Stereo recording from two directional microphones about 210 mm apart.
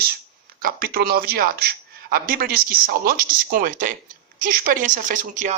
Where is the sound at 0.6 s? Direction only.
45° right (ahead or behind).